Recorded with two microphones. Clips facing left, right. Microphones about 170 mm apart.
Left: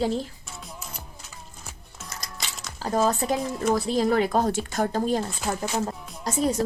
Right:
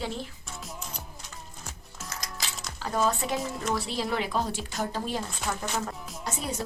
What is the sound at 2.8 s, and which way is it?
A woman's voice, 40° left (ahead or behind).